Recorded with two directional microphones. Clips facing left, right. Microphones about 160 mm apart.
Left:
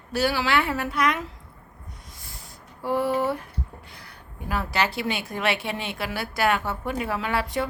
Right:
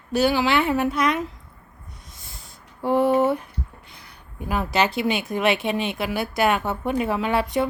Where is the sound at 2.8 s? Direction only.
20° right (ahead or behind).